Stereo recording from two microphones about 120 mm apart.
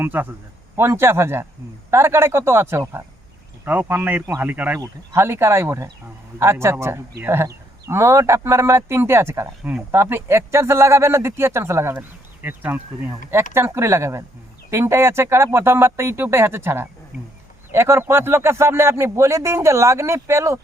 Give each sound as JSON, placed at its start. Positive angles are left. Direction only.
{"t": 0.0, "sound": "speech", "side_deg": -15}